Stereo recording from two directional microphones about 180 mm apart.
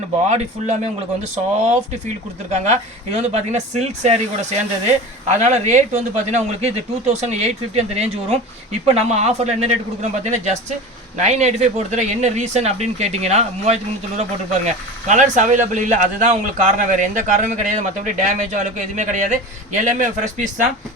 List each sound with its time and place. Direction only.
0.3 s speech: 40° right (ahead or behind)